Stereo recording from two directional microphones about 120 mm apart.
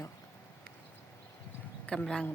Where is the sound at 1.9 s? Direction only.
10° left (ahead or behind).